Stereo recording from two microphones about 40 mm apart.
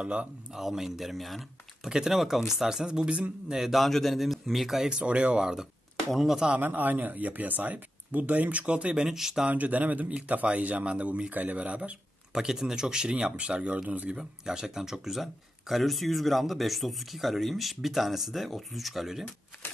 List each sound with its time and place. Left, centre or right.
0.0 s speech: right
0.6 s speech: centre
1.9 s speech: centre
3.1 s speech: right
3.4 s speech: centre
4.8 s speech: right
5.4 s speech: centre
6.0 s speech: centre
6.6 s speech: right
9.0 s speech: centre
9.5 s speech: right
12.4 s speech: centre